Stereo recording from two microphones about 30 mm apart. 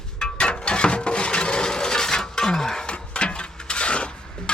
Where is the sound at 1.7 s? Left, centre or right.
Left.